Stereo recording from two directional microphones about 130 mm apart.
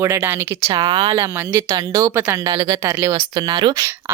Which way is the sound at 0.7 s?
35° right (ahead or behind).